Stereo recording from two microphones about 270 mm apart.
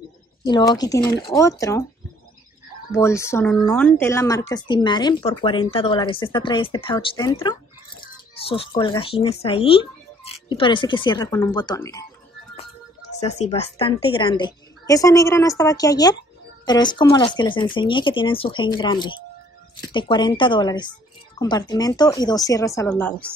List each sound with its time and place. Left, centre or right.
0.5 s speech: centre
2.9 s speech: centre
13.1 s speech: left; by 23.3 s centre